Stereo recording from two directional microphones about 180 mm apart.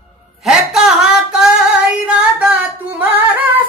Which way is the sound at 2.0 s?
5° right (ahead or behind).